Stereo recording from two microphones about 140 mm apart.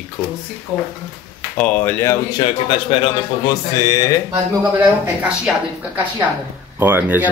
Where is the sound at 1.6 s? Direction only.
10° left (ahead or behind).